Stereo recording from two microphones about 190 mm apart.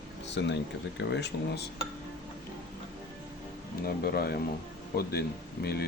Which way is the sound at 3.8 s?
50° left (ahead or behind).